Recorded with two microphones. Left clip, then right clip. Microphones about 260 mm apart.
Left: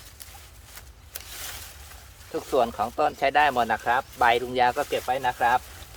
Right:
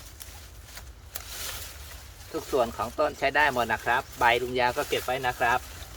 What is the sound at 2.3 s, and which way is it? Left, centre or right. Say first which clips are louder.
Speech: left 3 dB; left.